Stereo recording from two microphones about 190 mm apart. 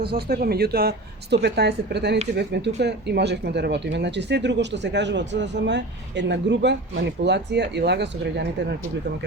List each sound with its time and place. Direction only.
0.0 s speech: 55° right (ahead or behind)